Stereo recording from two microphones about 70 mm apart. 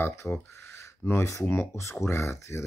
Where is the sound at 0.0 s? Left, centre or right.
Left.